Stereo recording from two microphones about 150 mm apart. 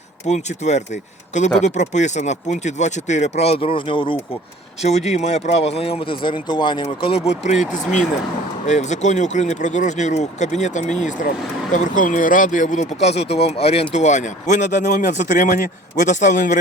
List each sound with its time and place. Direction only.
0.3 s speech: 50° left (ahead or behind)
4.8 s speech: 45° left (ahead or behind); by 6.8 s 30° left (ahead or behind)
7.0 s speech: 45° left (ahead or behind)